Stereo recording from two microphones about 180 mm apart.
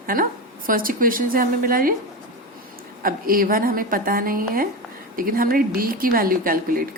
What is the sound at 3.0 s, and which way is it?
A woman's voice, 50° right (ahead or behind).